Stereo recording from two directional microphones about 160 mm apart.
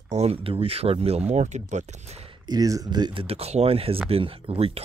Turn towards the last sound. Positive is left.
turn(degrees=-35)  # may be behind; listen again after turning